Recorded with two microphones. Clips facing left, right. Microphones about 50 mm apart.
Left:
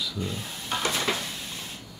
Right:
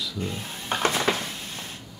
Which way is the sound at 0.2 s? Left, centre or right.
Right.